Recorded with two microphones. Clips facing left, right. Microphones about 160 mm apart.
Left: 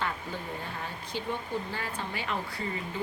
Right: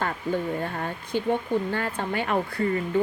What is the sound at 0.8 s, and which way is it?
Speech, 55° right (ahead or behind).